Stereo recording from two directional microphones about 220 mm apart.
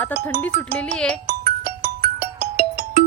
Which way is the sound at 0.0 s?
10° left (ahead or behind).